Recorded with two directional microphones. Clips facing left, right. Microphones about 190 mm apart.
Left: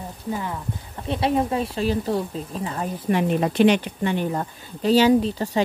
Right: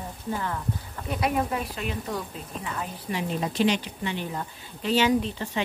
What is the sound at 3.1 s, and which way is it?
Speech, 60° left (ahead or behind).